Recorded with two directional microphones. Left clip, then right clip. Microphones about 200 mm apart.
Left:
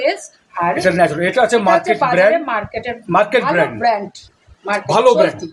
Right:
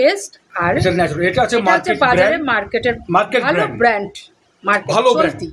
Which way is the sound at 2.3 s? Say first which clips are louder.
Right 1 dB; 50° right (ahead or behind).